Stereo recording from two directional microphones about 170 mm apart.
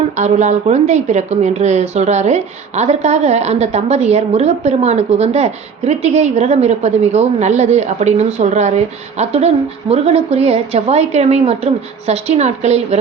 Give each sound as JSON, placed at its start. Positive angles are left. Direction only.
{"t": 0.2, "sound": "a woman's voice", "side_deg": -45}